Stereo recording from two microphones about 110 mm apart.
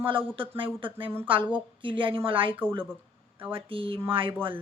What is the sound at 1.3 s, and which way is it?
A woman's voice, 50° right (ahead or behind).